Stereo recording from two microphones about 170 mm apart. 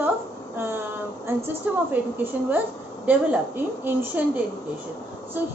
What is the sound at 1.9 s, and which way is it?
A woman's voice, 10° right (ahead or behind).